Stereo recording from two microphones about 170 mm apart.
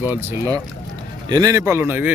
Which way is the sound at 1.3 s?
20° right (ahead or behind).